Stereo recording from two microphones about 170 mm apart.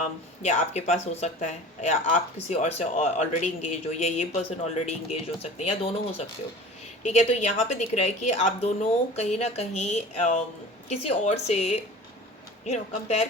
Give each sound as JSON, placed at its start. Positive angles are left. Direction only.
{"t": 0.4, "sound": "speech", "side_deg": 40}